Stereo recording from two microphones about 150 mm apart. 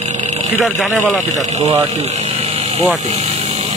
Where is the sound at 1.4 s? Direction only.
50° right (ahead or behind).